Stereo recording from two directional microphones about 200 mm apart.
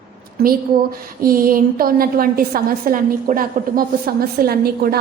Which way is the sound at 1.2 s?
45° right (ahead or behind).